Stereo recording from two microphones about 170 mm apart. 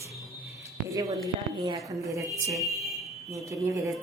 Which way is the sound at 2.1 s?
20° right (ahead or behind).